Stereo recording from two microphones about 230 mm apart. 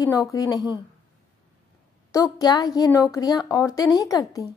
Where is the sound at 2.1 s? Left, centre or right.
Centre.